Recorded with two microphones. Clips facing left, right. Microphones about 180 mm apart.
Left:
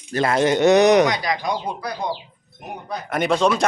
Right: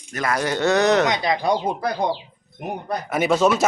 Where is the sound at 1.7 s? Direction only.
50° right (ahead or behind).